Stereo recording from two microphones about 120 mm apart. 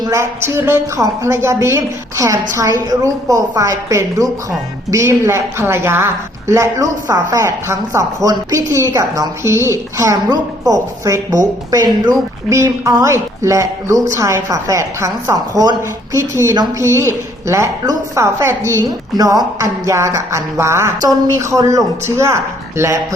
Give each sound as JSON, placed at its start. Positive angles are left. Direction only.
{"t": 0.0, "sound": "speech", "side_deg": -25}